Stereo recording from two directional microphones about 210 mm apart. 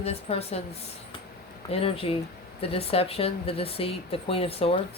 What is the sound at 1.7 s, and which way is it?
Speech, 25° left (ahead or behind).